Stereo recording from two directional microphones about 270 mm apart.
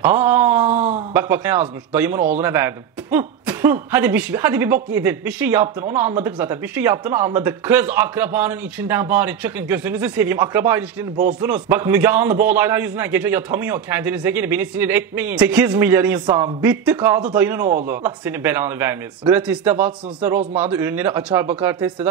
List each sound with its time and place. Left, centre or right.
0.0 s wail: centre
0.7 s a sound: right
1.1 s a man's voice: centre